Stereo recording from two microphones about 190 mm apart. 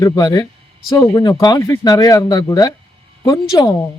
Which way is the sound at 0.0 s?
20° left (ahead or behind).